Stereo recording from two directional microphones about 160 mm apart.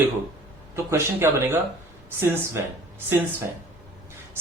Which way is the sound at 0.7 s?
15° right (ahead or behind).